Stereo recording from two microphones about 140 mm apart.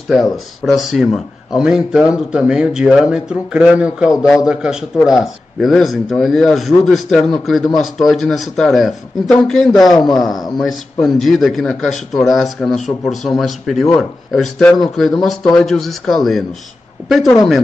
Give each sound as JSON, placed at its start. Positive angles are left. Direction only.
{"t": 0.1, "sound": "speech", "side_deg": 0}
{"t": 9.8, "sound": "a man's voice", "side_deg": 30}
{"t": 10.6, "sound": "speech", "side_deg": 5}